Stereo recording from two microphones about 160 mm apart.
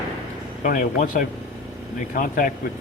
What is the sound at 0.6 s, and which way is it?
Speech, 55° left (ahead or behind).